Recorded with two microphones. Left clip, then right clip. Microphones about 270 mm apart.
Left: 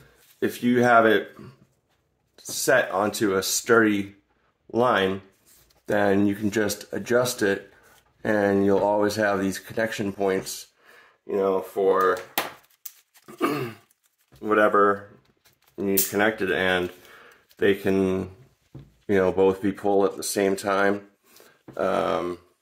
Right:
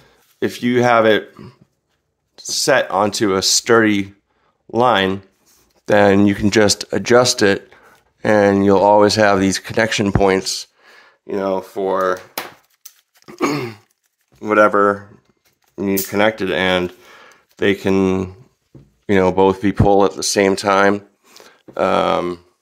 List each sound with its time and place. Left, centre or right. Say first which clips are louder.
0.4 s speech: right 5 dB; right
13.2 s throat clearing: right 6 dB; right
15.7 s speech: right 5 dB; right